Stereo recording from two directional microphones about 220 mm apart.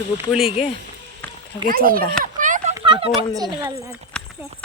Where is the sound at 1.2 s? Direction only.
5° left (ahead or behind).